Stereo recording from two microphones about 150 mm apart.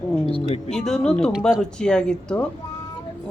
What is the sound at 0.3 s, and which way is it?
Speech, 40° left (ahead or behind).